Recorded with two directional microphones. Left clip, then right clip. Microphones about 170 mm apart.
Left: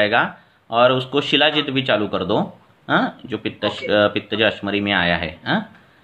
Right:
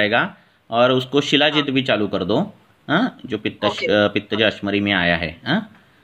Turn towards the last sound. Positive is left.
turn(degrees=-40)  # may be behind; listen again after turning